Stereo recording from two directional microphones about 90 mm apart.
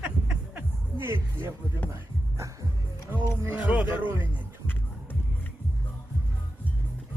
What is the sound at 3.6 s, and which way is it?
Music, 15° right (ahead or behind).